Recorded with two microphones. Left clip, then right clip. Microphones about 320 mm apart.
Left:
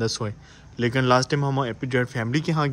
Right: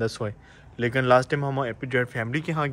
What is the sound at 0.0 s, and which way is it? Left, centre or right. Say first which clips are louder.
Speech: left 1 dB; centre.